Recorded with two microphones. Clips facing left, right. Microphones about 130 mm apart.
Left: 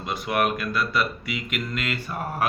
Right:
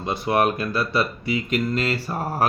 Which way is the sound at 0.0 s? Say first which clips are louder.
Right 4 dB; 30° right (ahead or behind).